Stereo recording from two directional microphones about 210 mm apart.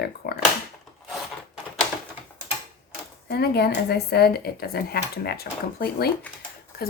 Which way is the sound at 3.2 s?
50° left (ahead or behind).